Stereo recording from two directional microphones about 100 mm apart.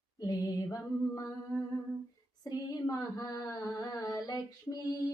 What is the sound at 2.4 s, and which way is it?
Female singing, 40° left (ahead or behind).